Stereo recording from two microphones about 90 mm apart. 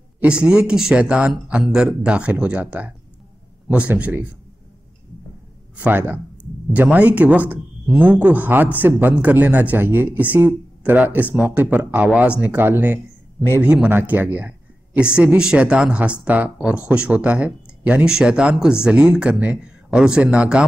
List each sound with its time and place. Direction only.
0.2 s speech: 15° right (ahead or behind)
5.8 s a man's voice: 20° right (ahead or behind)